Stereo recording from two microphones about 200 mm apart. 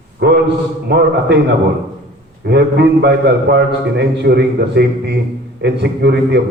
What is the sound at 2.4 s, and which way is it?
A man's voice, 55° right (ahead or behind).